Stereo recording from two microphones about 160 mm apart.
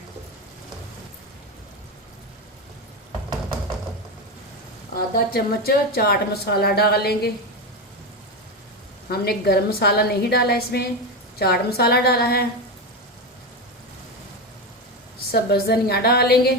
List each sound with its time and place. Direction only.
5.3 s speech: 70° left (ahead or behind)
9.0 s speech: 75° left (ahead or behind)
15.3 s speech: 70° left (ahead or behind)